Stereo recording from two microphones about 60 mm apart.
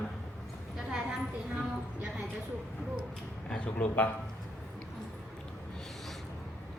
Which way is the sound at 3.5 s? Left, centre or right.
Left.